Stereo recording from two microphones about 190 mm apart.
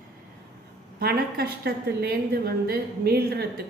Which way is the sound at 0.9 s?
55° right (ahead or behind).